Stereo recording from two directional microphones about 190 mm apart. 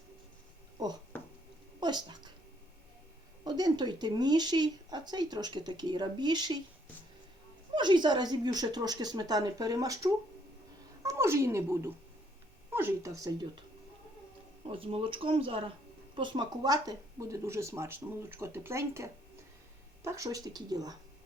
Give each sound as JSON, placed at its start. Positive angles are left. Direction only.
{"t": 1.1, "sound": "a sound", "side_deg": 10}
{"t": 1.8, "sound": "speech", "side_deg": -20}
{"t": 3.4, "sound": "speech", "side_deg": -20}
{"t": 7.8, "sound": "speech", "side_deg": -25}
{"t": 14.7, "sound": "speech", "side_deg": -30}
{"t": 20.1, "sound": "speech", "side_deg": -15}